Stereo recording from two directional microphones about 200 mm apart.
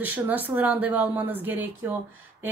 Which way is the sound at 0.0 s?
10° right (ahead or behind).